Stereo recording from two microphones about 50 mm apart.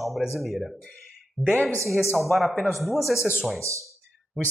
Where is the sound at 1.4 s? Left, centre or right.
Right.